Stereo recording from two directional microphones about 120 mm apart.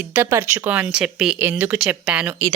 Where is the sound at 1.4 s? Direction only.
15° right (ahead or behind).